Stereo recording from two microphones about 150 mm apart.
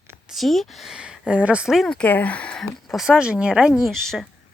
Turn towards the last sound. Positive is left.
turn(degrees=5)  # may be behind; listen again after turning